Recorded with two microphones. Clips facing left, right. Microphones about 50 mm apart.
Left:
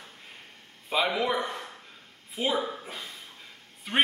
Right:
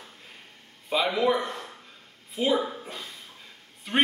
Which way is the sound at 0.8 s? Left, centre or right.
Centre.